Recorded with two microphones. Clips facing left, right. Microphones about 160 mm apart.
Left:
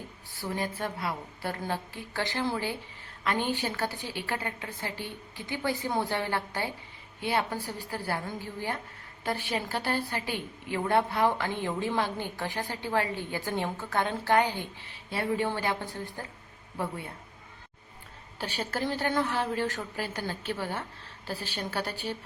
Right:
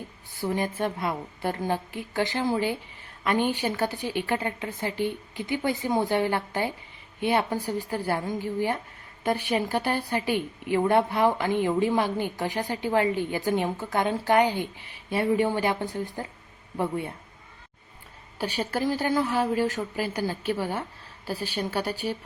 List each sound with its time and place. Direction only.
0.5 s a woman's voice: 20° right (ahead or behind)
18.3 s a woman's voice: 15° right (ahead or behind)